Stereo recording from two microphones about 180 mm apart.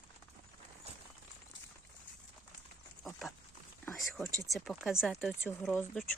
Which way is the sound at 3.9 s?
Centre (ahead or behind).